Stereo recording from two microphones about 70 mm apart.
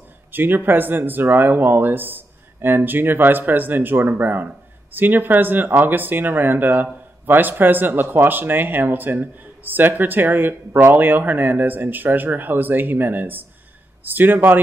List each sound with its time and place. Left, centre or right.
0.3 s speech: right